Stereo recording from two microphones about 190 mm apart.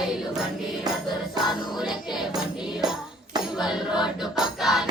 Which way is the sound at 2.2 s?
Centre (ahead or behind).